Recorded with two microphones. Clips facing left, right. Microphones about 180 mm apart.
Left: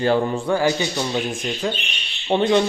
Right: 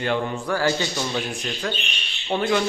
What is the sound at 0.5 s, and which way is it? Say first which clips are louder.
Speech: left 2 dB; 15° left (ahead or behind).